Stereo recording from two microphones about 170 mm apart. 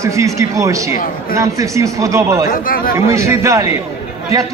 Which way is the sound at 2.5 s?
55° left (ahead or behind).